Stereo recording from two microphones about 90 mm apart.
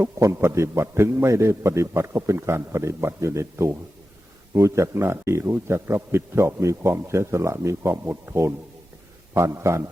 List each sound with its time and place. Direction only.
0.0 s a man's voice: 30° right (ahead or behind)